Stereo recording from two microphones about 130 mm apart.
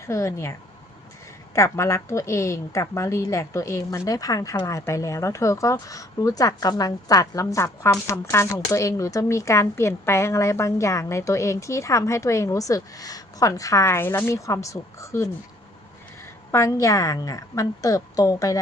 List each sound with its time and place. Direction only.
0.0 s speech: 20° left (ahead or behind)
1.5 s speech: 20° left (ahead or behind)